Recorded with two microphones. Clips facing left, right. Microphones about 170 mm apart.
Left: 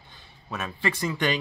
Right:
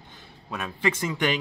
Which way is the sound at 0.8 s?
15° right (ahead or behind).